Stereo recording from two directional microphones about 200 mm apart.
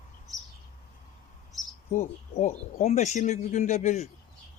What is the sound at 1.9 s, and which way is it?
Speech, 35° left (ahead or behind).